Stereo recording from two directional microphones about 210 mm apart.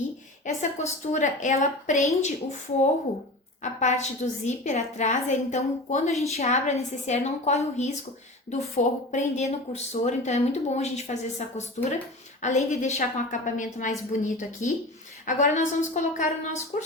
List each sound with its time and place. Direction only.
0.6 s speech: 35° left (ahead or behind)
8.8 s speech: 35° left (ahead or behind)